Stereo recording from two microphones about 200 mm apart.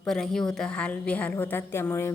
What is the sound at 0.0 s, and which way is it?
A woman's voice, centre (ahead or behind).